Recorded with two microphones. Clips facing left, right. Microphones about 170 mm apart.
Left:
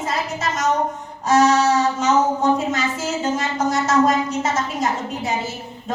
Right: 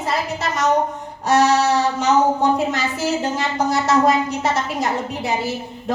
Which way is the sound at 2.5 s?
65° right (ahead or behind).